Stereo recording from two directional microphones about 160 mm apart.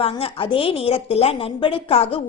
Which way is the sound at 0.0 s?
35° left (ahead or behind).